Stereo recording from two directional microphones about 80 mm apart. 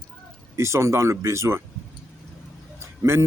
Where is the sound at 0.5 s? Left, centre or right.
Right.